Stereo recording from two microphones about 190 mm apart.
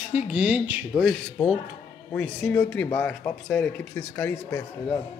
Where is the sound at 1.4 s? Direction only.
5° left (ahead or behind).